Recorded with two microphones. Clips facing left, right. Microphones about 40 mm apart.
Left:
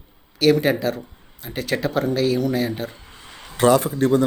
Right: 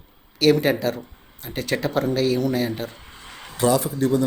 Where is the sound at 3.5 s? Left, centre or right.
Left.